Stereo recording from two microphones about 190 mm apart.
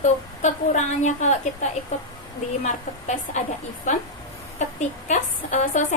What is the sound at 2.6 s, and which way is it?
A woman's voice, 40° left (ahead or behind).